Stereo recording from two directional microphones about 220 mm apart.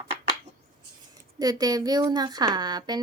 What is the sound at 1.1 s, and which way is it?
Speech, 15° right (ahead or behind).